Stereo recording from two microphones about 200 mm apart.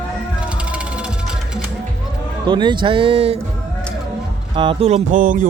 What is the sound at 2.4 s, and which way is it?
Speech, 20° right (ahead or behind).